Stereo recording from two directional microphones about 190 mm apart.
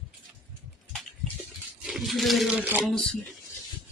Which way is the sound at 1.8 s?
Centre (ahead or behind).